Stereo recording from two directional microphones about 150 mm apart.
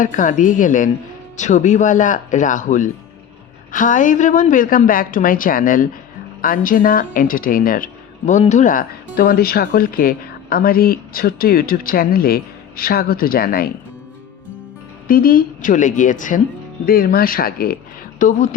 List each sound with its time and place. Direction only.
0.0 s a woman's voice: 60° left (ahead or behind)
9.1 s speech: 80° left
15.0 s a woman's voice: 70° left (ahead or behind)
16.8 s speech: 85° left
18.2 s a woman's voice: 55° left (ahead or behind)